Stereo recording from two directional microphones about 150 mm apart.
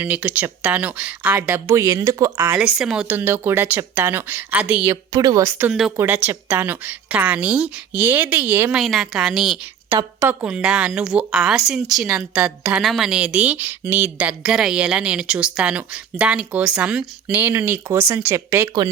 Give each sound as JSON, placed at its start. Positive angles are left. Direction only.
{"t": 0.0, "sound": "a woman's voice", "side_deg": -10}
{"t": 5.1, "sound": "a woman's voice", "side_deg": -25}
{"t": 8.8, "sound": "a woman's voice", "side_deg": 0}